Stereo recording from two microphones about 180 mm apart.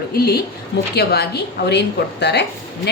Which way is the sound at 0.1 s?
60° left (ahead or behind).